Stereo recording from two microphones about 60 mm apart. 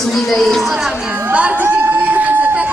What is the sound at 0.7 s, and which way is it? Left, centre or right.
Speech, centre.